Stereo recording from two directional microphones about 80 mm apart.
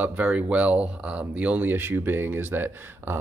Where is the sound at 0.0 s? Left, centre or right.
Centre.